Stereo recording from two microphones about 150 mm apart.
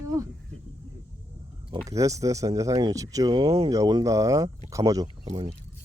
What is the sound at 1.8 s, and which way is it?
Speech, 20° right (ahead or behind).